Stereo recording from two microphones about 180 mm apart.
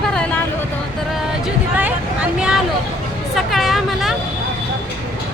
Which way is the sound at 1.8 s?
5° right (ahead or behind).